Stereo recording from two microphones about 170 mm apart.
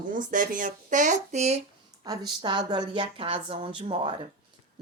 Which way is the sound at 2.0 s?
25° right (ahead or behind).